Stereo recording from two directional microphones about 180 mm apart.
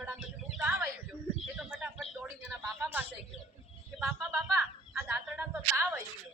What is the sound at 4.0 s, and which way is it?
Speech, 5° right (ahead or behind).